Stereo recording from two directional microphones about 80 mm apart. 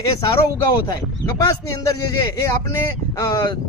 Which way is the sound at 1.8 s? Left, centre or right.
Left.